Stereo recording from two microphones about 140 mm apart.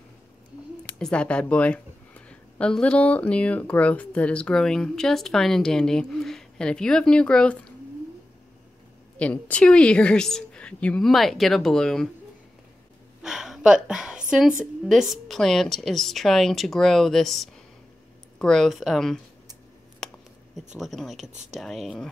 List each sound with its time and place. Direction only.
0.9 s speech: 5° left (ahead or behind)
9.2 s a woman's voice: 10° left (ahead or behind)
13.2 s a woman's voice: 5° right (ahead or behind)
20.0 s a sound: 5° left (ahead or behind)
20.5 s a woman's voice: centre (ahead or behind)
21.3 s speech: 55° right (ahead or behind)
21.5 s a woman's voice: centre (ahead or behind)